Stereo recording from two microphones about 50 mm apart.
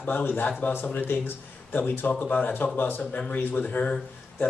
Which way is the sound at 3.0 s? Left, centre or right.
Left.